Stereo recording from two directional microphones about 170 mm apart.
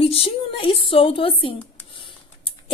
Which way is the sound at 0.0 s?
35° left (ahead or behind).